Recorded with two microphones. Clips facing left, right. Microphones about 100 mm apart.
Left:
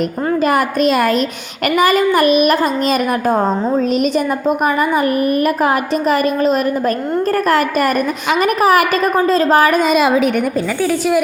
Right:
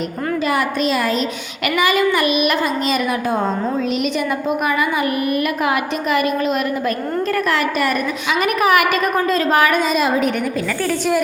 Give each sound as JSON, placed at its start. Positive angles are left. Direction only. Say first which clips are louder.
{"t": 0.4, "sound": "speech", "louder": "left 5 dB", "side_deg": 50}
{"t": 1.6, "sound": "a woman's voice", "louder": "left 4 dB", "side_deg": 40}
{"t": 9.8, "sound": "a woman's voice", "louder": "left 4 dB", "side_deg": 80}
{"t": 10.8, "sound": "a woman's voice", "louder": "left 3 dB", "side_deg": 5}